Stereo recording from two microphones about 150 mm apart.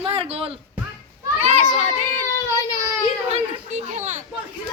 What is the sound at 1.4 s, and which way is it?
Children playing, 50° right (ahead or behind).